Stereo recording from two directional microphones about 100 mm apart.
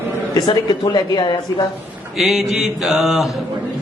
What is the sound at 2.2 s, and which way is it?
A man's voice, 5° right (ahead or behind).